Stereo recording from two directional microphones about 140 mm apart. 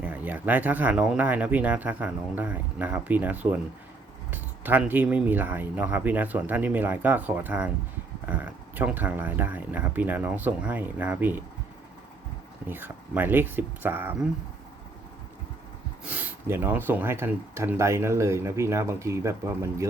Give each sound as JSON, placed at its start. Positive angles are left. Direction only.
{"t": 0.0, "sound": "speech", "side_deg": -10}
{"t": 12.6, "sound": "speech", "side_deg": -15}
{"t": 16.0, "sound": "speech", "side_deg": -10}